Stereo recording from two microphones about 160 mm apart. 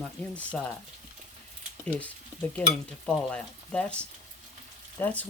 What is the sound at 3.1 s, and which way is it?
Speech, 5° left (ahead or behind).